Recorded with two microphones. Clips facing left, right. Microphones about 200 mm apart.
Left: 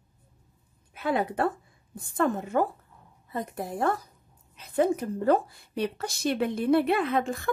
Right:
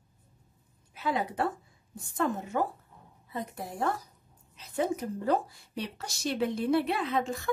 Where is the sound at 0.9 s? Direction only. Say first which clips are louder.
Left 4 dB; 55° left (ahead or behind).